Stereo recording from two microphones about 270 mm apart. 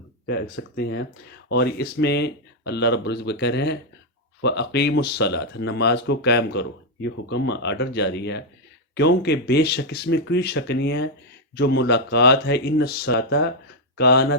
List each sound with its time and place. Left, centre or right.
0.3 s speech: left